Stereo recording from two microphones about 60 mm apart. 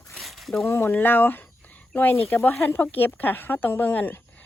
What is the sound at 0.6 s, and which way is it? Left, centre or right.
Speech, left.